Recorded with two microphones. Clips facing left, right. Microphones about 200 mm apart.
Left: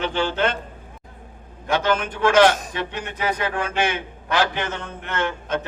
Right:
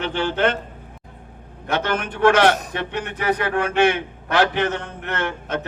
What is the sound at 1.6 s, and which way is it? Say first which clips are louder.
A man's voice: left 2 dB; 55° right (ahead or behind).